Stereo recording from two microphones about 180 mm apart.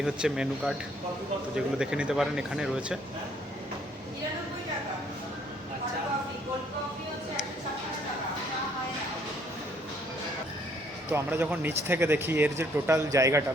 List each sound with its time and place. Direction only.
0.0 s speech: 5° right (ahead or behind)
11.1 s a man's voice: 10° right (ahead or behind)